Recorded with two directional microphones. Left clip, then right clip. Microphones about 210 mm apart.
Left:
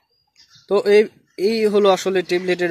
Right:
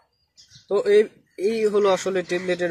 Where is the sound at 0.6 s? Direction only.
40° left (ahead or behind).